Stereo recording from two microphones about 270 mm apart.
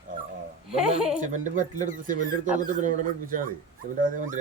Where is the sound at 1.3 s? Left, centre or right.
Right.